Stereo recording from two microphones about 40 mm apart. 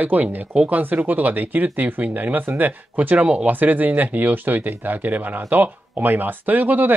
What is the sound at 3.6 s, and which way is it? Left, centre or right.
Speech, right.